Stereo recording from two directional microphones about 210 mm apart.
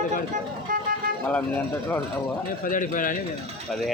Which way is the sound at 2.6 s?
40° left (ahead or behind).